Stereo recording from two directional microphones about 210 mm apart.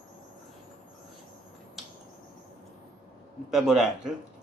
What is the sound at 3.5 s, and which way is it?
Speech, centre (ahead or behind).